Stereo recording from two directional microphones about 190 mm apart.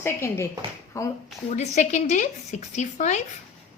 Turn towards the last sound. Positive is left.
turn(degrees=40)  # may be behind; listen again after turning